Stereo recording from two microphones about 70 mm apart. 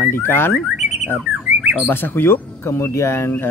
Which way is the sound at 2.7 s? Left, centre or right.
Left.